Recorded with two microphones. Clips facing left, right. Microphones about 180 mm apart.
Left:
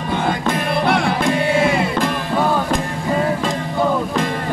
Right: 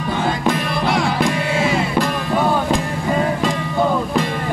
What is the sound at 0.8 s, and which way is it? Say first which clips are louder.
Music: even; 55° left (ahead or behind).